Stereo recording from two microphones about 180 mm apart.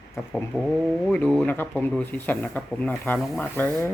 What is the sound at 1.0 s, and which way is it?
Speech, 5° left (ahead or behind).